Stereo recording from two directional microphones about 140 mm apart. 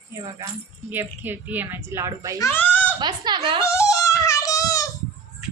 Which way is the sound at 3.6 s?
20° left (ahead or behind).